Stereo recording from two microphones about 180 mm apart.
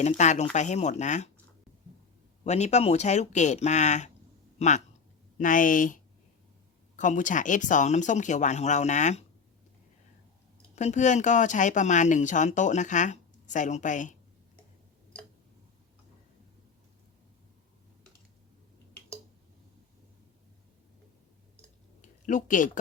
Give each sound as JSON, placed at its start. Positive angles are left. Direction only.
{"t": 0.0, "sound": "speech", "side_deg": 40}
{"t": 2.4, "sound": "speech", "side_deg": 40}
{"t": 10.8, "sound": "speech", "side_deg": 40}
{"t": 22.3, "sound": "speech", "side_deg": 45}